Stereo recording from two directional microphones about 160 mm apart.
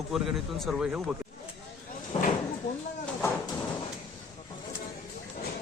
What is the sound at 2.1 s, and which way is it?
Cupboard open or close, 40° left (ahead or behind).